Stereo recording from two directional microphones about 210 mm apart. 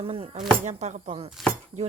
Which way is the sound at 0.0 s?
25° right (ahead or behind).